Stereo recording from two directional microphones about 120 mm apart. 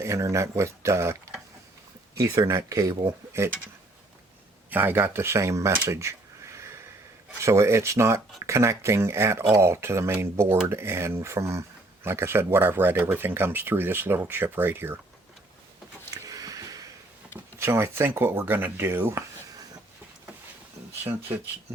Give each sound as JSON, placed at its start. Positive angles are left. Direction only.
{"t": 0.0, "sound": "speech", "side_deg": -25}
{"t": 4.7, "sound": "speech", "side_deg": -15}
{"t": 16.1, "sound": "a sound", "side_deg": -30}
{"t": 17.6, "sound": "speech", "side_deg": -20}
{"t": 21.0, "sound": "speech", "side_deg": -20}